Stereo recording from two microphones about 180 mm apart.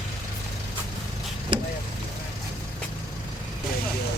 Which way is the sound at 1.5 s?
30° right (ahead or behind).